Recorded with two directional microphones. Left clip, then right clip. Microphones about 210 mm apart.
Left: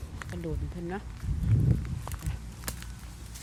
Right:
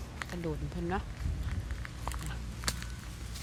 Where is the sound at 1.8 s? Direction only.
5° left (ahead or behind).